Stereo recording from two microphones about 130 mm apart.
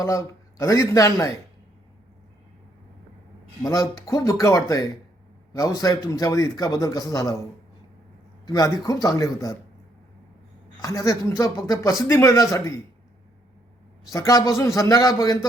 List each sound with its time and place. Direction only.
0.0 s a man's voice: 25° left (ahead or behind)
3.6 s a man's voice: 30° left (ahead or behind)
8.4 s a man's voice: 30° left (ahead or behind)
10.8 s a man's voice: 25° left (ahead or behind)
14.1 s a man's voice: 25° left (ahead or behind)